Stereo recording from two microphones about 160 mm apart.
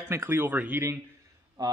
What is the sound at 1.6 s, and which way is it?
Speech, 25° right (ahead or behind).